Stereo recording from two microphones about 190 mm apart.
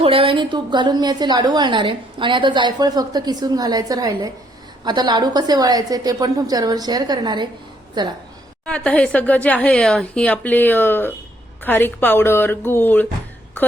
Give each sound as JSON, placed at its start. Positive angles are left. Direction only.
{"t": 0.0, "sound": "a woman's voice", "side_deg": -30}
{"t": 8.6, "sound": "speech", "side_deg": 5}